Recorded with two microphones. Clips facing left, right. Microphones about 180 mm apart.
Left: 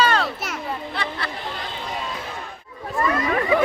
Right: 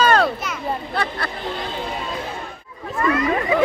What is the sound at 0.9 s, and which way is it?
Chatter, 50° right (ahead or behind).